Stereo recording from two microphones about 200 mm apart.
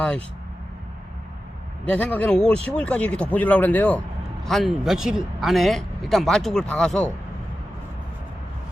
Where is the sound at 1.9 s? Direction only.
10° left (ahead or behind).